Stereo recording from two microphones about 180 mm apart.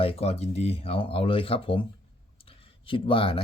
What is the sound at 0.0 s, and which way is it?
A man's voice, 35° left (ahead or behind).